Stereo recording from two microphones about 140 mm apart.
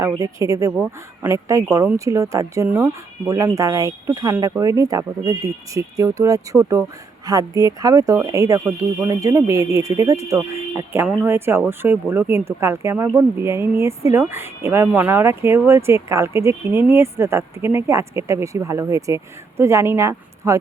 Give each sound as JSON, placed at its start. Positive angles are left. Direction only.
{"t": 0.2, "sound": "speech", "side_deg": -25}